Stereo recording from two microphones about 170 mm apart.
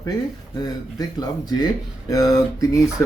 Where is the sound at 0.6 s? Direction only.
20° left (ahead or behind).